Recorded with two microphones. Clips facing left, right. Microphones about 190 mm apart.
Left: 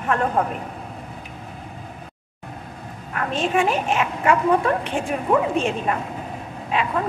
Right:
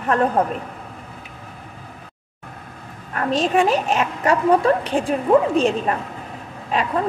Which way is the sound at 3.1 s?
40° right (ahead or behind).